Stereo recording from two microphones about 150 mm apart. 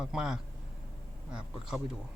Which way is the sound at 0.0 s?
5° right (ahead or behind).